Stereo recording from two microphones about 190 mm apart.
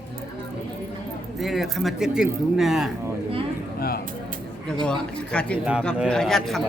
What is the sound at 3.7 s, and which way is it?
Speech, 55° left (ahead or behind).